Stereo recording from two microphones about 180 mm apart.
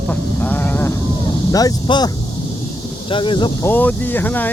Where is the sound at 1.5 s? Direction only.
20° left (ahead or behind).